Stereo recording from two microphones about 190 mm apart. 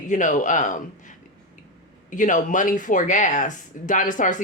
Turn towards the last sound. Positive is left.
turn(degrees=45)  # may be behind; listen again after turning